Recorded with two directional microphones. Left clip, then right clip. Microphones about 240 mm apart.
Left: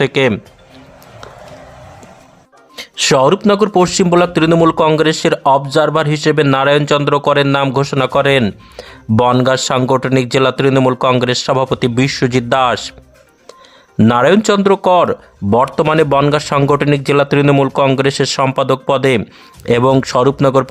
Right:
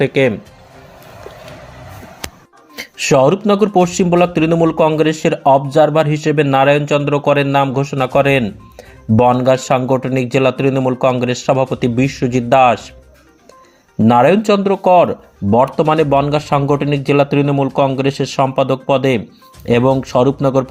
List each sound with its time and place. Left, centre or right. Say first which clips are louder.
0.0 s speech: left 1 dB; centre
2.7 s music: even; centre
3.0 s speech: left 1 dB; centre
14.1 s speech: right 1 dB; centre